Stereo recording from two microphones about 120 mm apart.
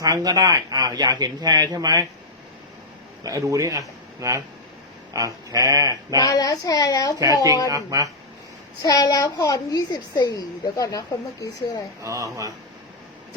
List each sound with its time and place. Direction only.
0.0 s speech: 30° right (ahead or behind)
3.2 s speech: 30° right (ahead or behind)
6.1 s a child's voice: 30° left (ahead or behind)
7.9 s speech: 30° right (ahead or behind)
8.8 s a woman's voice: 30° left (ahead or behind)
12.0 s speech: 30° right (ahead or behind)